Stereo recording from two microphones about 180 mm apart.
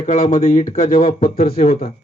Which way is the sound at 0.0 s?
50° left (ahead or behind).